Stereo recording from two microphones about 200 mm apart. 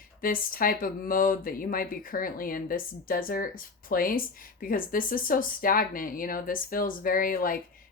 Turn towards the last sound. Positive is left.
turn(degrees=45)  # may be behind; listen again after turning